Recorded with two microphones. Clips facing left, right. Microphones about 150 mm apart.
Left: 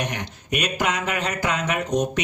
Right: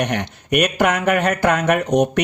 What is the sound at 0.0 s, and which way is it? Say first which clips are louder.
Speech: right 7 dB; 65° right (ahead or behind).